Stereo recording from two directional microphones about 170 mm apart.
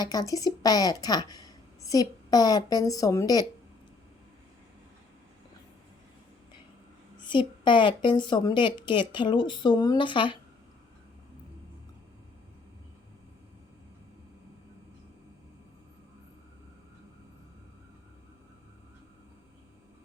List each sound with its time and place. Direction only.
0.0 s a woman's voice: 20° left (ahead or behind)
7.3 s a woman's voice: 30° left (ahead or behind)